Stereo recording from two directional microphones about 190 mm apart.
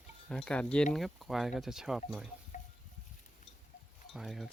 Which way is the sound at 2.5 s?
40° left (ahead or behind).